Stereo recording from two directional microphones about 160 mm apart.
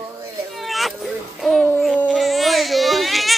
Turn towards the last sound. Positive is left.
turn(degrees=0)  # may be behind; listen again after turning